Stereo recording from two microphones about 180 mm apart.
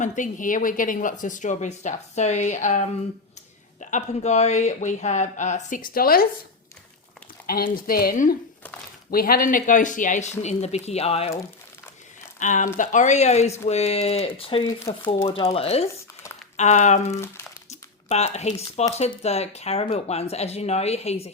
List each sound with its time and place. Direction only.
0.0 s speech: 45° left (ahead or behind)
7.4 s speech: 55° left (ahead or behind); by 11.3 s 35° left (ahead or behind)
12.4 s speech: 45° left (ahead or behind)
14.9 s speech: 15° left (ahead or behind)
15.2 s speech: 35° left (ahead or behind)